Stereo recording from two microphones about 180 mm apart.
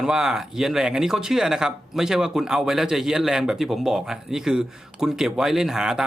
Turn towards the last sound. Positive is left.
turn(degrees=-5)  # may be behind; listen again after turning